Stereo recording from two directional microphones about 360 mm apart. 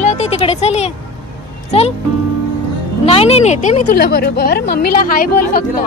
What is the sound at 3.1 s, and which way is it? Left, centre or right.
A woman's voice, centre.